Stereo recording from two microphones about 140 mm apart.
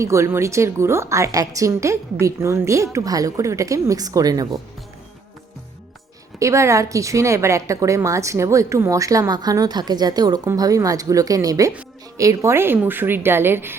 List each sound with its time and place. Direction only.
0.0 s a woman's voice: 20° right (ahead or behind)
6.4 s a woman's voice: 20° right (ahead or behind)